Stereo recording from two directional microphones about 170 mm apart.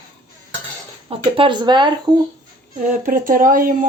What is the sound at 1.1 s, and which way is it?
Speech, 30° right (ahead or behind).